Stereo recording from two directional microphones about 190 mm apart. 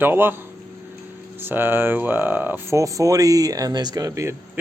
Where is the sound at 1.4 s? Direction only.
10° right (ahead or behind).